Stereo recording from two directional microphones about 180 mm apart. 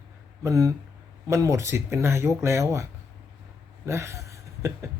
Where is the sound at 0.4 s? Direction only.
20° right (ahead or behind).